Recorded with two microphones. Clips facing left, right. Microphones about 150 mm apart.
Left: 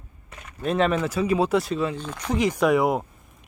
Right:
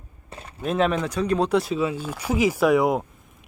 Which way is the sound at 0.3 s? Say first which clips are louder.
Right 4 dB; 30° right (ahead or behind).